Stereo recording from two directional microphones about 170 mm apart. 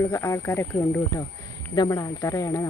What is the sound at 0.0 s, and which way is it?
Speech, 15° left (ahead or behind).